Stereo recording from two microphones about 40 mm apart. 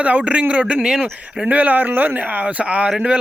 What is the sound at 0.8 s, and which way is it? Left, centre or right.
Speech, centre.